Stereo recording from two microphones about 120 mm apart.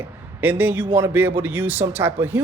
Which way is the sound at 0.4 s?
15° right (ahead or behind).